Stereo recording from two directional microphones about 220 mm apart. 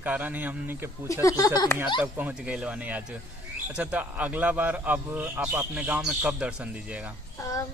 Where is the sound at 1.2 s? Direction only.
15° left (ahead or behind).